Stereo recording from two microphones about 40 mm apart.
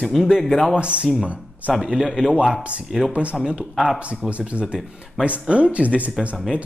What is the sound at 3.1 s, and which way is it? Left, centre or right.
Speech, right.